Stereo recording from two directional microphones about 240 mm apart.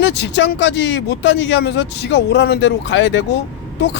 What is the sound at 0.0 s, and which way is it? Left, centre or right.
Speech, left.